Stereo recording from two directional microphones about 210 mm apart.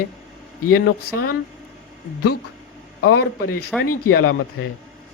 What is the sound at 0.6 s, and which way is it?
Speech, 45° left (ahead or behind).